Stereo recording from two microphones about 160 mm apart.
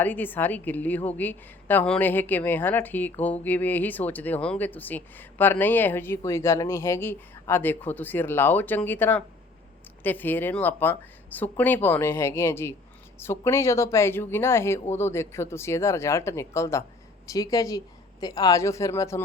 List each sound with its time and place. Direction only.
0.0 s a woman's voice: 10° left (ahead or behind)